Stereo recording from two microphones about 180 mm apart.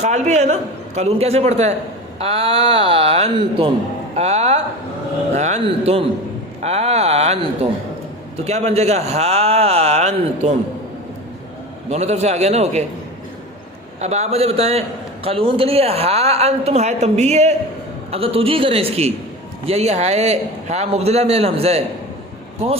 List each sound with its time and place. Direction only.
0.0 s a man's voice: 40° right (ahead or behind)
11.9 s a man's voice: 40° right (ahead or behind)
14.0 s a man's voice: 35° right (ahead or behind)